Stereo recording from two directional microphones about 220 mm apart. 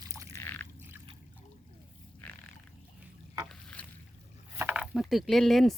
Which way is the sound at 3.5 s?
5° left (ahead or behind).